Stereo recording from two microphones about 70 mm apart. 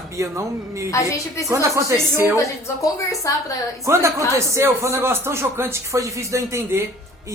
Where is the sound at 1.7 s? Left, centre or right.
Right.